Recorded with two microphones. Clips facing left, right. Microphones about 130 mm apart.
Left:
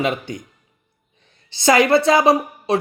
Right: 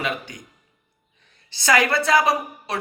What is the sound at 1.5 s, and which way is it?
Speech, 25° left (ahead or behind).